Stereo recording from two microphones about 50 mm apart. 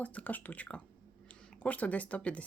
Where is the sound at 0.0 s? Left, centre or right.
Left.